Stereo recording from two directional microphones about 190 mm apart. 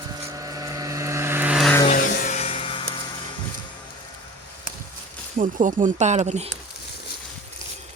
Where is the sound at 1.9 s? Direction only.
50° left (ahead or behind); by 3.0 s 25° left (ahead or behind).